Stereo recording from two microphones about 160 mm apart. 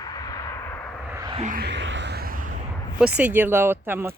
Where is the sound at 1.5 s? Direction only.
80° right; by 2.6 s 60° right (ahead or behind).